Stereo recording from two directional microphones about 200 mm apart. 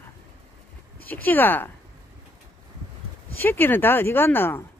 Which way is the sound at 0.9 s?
10° left (ahead or behind).